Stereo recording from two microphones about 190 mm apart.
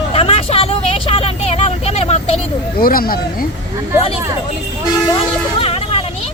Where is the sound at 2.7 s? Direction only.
50° left (ahead or behind).